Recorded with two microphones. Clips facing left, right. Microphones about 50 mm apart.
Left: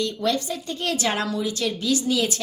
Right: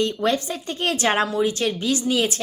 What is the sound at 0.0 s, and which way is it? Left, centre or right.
A woman's voice, right.